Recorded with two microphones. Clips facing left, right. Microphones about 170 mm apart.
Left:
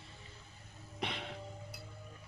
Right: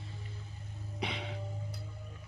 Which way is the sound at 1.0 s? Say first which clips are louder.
Right 2 dB; centre (ahead or behind).